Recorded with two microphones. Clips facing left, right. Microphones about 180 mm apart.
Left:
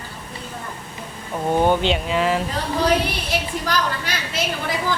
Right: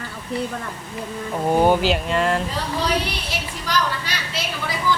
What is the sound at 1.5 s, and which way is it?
Speech, 10° right (ahead or behind).